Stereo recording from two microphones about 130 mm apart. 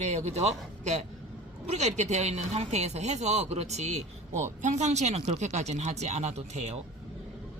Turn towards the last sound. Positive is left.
turn(degrees=-60)  # may be behind; listen again after turning